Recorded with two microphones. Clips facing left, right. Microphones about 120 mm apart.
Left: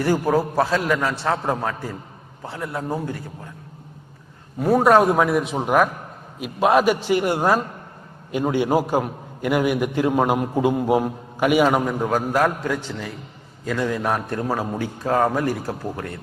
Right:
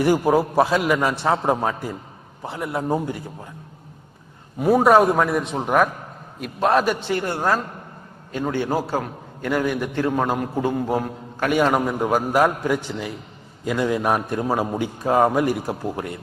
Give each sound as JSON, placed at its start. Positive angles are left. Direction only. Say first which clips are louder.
{"t": 0.0, "sound": "a man's voice", "louder": "right 2 dB", "side_deg": -15}
{"t": 4.6, "sound": "a man's voice", "louder": "even", "side_deg": -5}